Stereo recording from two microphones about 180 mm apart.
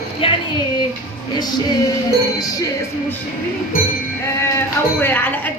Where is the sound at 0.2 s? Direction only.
30° left (ahead or behind).